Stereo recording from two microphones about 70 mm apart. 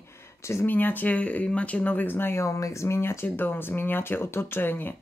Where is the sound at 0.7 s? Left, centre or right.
Left.